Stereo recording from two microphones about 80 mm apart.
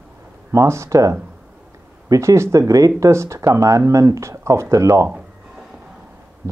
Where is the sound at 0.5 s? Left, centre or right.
Right.